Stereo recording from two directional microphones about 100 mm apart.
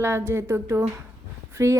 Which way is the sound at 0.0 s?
25° right (ahead or behind).